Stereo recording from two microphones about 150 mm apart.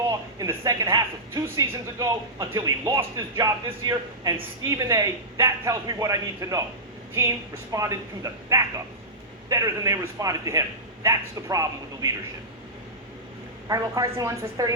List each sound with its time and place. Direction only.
0.1 s speech: 25° right (ahead or behind)
13.7 s speech: 25° right (ahead or behind)